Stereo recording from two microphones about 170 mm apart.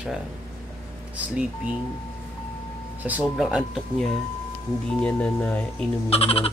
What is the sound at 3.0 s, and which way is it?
Speech, 10° right (ahead or behind).